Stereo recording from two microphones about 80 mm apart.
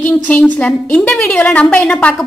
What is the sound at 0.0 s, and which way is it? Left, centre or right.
A woman's voice, centre.